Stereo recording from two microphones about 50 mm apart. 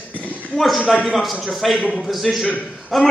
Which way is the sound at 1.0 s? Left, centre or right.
Centre.